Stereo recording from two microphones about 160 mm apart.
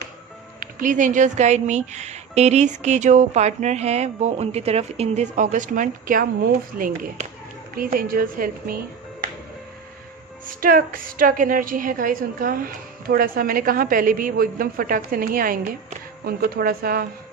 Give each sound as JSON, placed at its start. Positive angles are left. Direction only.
{"t": 0.6, "sound": "a woman's voice", "side_deg": -55}
{"t": 10.6, "sound": "a woman's voice", "side_deg": -65}